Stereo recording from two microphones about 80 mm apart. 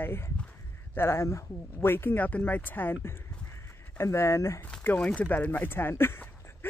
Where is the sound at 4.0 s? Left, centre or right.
Left.